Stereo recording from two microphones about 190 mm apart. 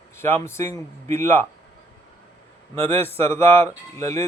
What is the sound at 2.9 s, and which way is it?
Speech, 10° left (ahead or behind).